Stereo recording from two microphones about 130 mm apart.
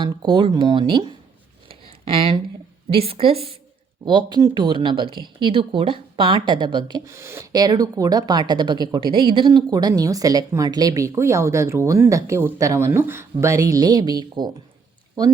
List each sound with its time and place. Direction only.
0.0 s speech: 35° right (ahead or behind)
2.1 s a woman's voice: 45° right (ahead or behind)
4.0 s speech: 35° right (ahead or behind)
7.0 s speech: 20° right (ahead or behind)